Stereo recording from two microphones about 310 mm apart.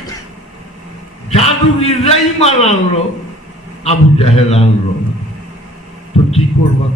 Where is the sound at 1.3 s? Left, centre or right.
Centre.